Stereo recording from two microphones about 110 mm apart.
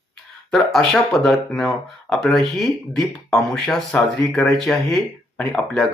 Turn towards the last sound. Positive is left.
turn(degrees=5)  # may be behind; listen again after turning